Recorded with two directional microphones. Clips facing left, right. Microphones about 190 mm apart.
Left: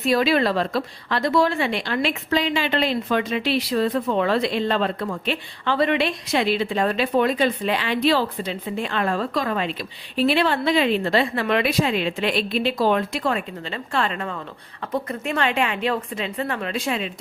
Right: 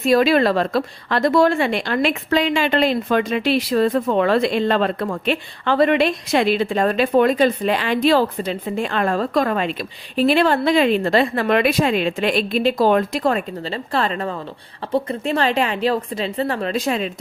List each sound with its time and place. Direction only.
0.0 s a woman's voice: 45° right (ahead or behind)